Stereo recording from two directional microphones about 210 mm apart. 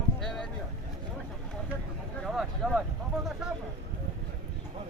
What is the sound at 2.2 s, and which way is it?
Speech, centre (ahead or behind).